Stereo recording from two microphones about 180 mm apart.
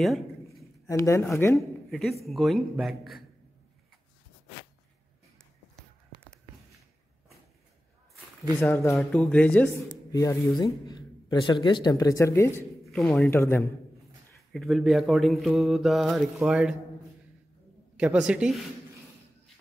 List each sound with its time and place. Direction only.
0.0 s a sound: centre (ahead or behind)
0.8 s speech: 15° left (ahead or behind)
1.9 s speech: centre (ahead or behind)
8.5 s speech: 10° left (ahead or behind)
10.6 s speech: 20° left (ahead or behind)
12.8 s speech: centre (ahead or behind)
13.3 s speech: 15° left (ahead or behind)
14.5 s speech: centre (ahead or behind)
17.9 s speech: 5° right (ahead or behind)